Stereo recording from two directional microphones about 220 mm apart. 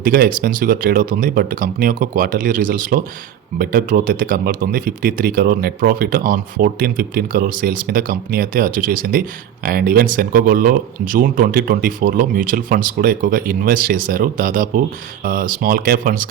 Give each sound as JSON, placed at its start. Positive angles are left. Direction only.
{"t": 0.0, "sound": "speech", "side_deg": -40}